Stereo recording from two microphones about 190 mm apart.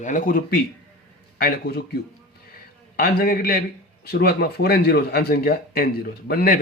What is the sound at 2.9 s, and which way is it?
Speech, 50° left (ahead or behind).